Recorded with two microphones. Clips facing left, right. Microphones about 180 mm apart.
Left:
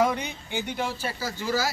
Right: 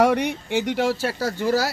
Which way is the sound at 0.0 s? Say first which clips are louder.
Right 6 dB; 75° right (ahead or behind).